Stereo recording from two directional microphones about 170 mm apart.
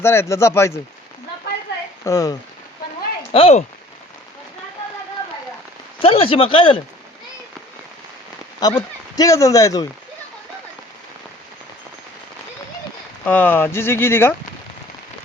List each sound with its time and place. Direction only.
0.0 s speech: 15° left (ahead or behind)
2.0 s speech: 20° left (ahead or behind)
3.3 s speech: 35° left (ahead or behind)
6.0 s speech: 35° left (ahead or behind)
8.6 s speech: 20° left (ahead or behind)
13.2 s speech: 10° left (ahead or behind)